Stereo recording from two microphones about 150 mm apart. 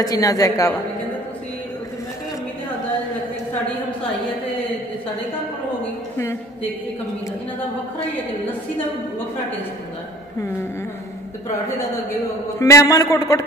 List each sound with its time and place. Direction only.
0.0 s a man's voice: 25° left (ahead or behind)
6.1 s a woman's voice: 15° left (ahead or behind)
12.1 s a man's voice: 20° left (ahead or behind)